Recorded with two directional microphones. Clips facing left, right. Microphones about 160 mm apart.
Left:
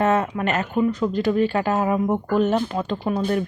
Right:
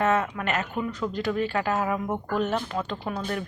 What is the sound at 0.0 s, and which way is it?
Speech, 30° left (ahead or behind).